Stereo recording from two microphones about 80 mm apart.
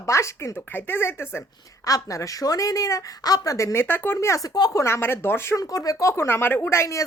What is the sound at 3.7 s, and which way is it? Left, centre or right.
Speech, left.